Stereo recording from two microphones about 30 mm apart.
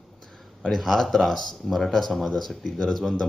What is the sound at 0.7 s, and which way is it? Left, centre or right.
Speech, centre.